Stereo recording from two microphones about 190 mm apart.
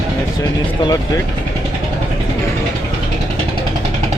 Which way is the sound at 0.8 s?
20° left (ahead or behind).